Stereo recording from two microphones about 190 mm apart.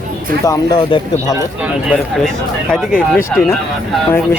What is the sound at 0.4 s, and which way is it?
Speech, 20° left (ahead or behind).